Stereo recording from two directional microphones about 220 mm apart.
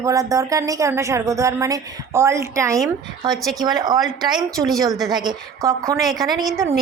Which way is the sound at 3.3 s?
Centre (ahead or behind).